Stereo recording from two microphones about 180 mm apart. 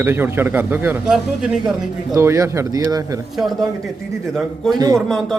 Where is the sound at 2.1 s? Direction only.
15° right (ahead or behind).